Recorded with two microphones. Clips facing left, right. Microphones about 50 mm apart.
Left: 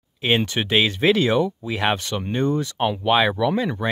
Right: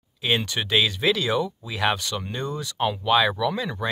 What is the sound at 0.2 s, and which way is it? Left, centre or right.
Speech, left.